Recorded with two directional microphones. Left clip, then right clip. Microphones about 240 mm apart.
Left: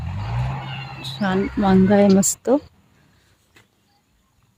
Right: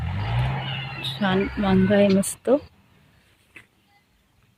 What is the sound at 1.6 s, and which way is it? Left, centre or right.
Speech, centre.